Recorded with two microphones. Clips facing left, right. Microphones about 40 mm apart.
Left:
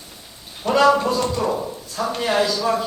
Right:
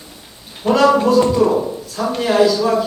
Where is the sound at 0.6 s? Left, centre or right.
Centre.